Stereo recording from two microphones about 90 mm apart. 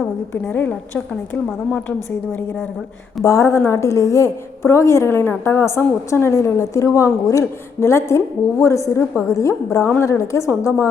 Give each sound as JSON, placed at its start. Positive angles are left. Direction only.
{"t": 0.7, "sound": "a woman's voice", "side_deg": 15}
{"t": 3.2, "sound": "a woman's voice", "side_deg": 35}